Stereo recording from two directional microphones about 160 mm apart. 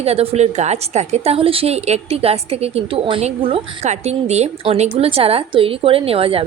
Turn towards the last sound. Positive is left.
turn(degrees=-35)  # may be behind; listen again after turning